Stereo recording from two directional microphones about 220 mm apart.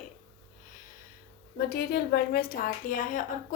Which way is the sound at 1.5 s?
45° left (ahead or behind).